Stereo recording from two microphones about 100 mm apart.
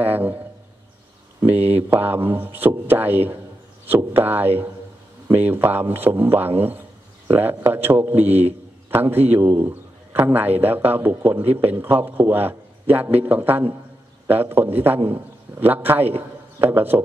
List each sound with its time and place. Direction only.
0.0 s a man's voice: 20° right (ahead or behind)
1.7 s a man's voice: 20° right (ahead or behind)